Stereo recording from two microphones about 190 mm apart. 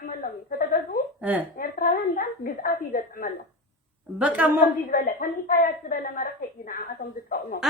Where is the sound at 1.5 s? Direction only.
45° left (ahead or behind).